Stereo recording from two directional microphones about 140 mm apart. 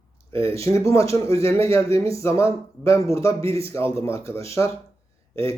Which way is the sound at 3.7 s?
20° left (ahead or behind).